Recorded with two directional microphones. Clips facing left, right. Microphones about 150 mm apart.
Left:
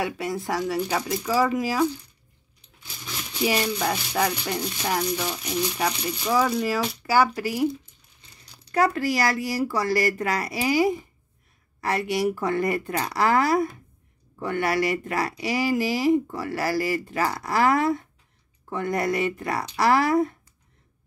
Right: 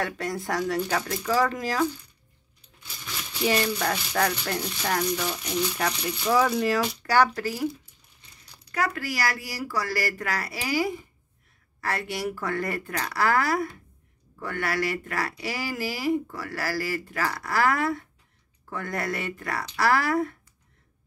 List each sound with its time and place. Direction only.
0.0 s speech: 5° left (ahead or behind)
3.4 s speech: 10° left (ahead or behind)
8.7 s speech: 25° left (ahead or behind)